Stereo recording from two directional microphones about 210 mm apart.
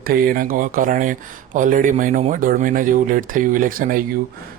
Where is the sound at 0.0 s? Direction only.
45° right (ahead or behind).